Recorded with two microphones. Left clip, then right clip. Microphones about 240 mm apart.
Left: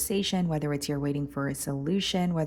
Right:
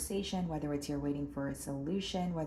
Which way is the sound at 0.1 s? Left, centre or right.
Left.